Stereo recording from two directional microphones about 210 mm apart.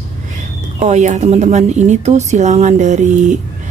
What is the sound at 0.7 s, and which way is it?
A woman's voice, 35° right (ahead or behind).